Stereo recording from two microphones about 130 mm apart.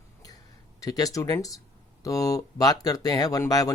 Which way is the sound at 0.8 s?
30° left (ahead or behind).